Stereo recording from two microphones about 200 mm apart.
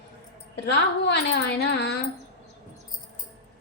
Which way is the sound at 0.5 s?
60° left (ahead or behind).